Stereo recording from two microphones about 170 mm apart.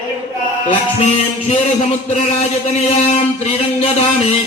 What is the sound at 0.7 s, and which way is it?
Music, 40° left (ahead or behind).